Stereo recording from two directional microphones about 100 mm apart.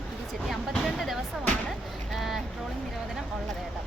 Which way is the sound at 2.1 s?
Centre (ahead or behind).